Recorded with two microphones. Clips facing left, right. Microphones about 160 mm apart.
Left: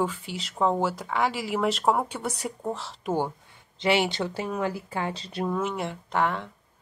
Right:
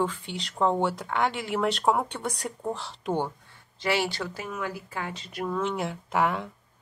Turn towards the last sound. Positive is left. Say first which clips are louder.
# even
turn(degrees=-5)  # may be behind; listen again after turning